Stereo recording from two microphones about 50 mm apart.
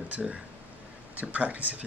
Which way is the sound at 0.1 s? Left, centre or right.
Right.